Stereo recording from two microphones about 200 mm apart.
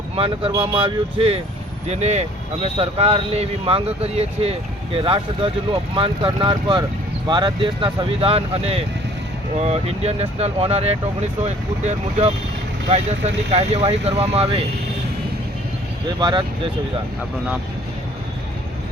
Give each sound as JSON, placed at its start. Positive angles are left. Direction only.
{"t": 0.2, "sound": "speech", "side_deg": -25}